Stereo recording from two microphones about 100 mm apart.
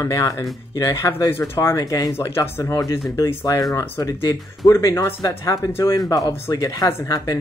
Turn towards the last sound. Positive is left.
turn(degrees=35)  # may be behind; listen again after turning